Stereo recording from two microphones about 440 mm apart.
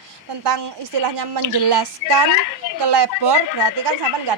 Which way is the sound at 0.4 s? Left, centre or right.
Right.